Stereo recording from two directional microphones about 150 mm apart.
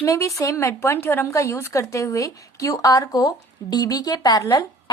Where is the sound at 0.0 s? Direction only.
20° left (ahead or behind).